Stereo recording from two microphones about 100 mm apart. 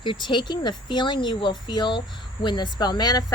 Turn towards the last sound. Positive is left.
turn(degrees=45)  # may be behind; listen again after turning